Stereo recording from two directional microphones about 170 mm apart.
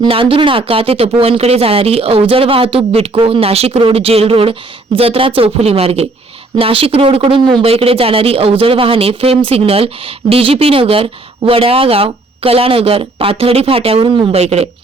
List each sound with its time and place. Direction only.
0.0 s speech: 30° right (ahead or behind)